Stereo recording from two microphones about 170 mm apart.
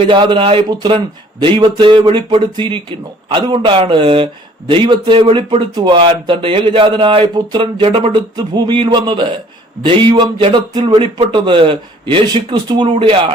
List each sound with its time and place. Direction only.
0.0 s speech: 30° right (ahead or behind)